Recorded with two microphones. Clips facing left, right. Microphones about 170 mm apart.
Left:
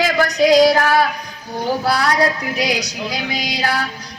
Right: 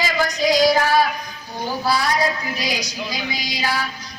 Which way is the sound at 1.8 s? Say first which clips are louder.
Left 2 dB; 70° left (ahead or behind).